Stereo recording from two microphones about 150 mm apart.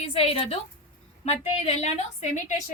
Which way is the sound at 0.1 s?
40° left (ahead or behind).